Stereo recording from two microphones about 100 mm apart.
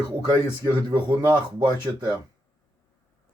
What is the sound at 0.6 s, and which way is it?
Speech, 40° right (ahead or behind).